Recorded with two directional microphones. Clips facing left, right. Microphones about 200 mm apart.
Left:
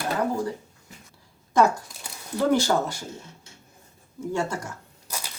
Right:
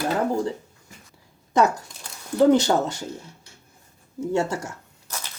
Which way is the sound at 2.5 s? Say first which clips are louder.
Right 4 dB; 20° right (ahead or behind).